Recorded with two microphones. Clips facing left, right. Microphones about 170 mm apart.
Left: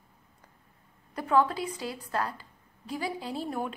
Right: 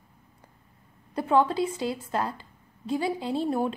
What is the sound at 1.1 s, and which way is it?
A woman's voice, 25° right (ahead or behind).